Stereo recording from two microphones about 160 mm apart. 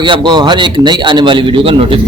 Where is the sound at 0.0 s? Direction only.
30° right (ahead or behind).